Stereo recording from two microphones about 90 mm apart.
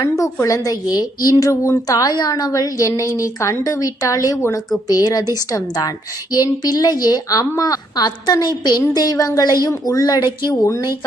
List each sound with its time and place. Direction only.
0.2 s a woman's voice: 35° left (ahead or behind); by 10.5 s 55° left (ahead or behind)
10.5 s a woman's voice: 35° left (ahead or behind)